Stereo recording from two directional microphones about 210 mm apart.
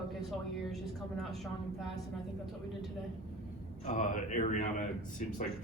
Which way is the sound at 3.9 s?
40° left (ahead or behind).